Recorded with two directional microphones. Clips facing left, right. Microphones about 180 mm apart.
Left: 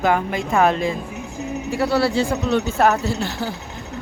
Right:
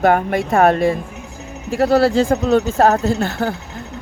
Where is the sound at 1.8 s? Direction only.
45° right (ahead or behind).